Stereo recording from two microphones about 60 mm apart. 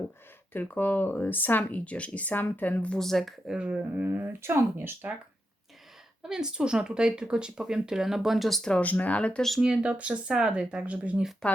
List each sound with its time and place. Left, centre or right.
0.5 s speech: left
1.8 s speech: left
3.0 s speech: centre
3.5 s speech: centre
4.0 s speech: right
6.2 s speech: centre
8.7 s speech: left
9.6 s speech: centre
11.4 s speech: centre